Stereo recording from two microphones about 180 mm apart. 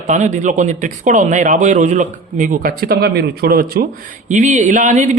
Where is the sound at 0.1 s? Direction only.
45° right (ahead or behind).